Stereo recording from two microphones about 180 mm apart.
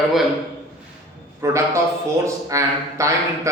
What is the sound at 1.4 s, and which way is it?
A man's voice, 15° right (ahead or behind).